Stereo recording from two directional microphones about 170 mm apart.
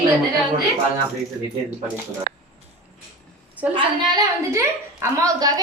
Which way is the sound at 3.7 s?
20° right (ahead or behind).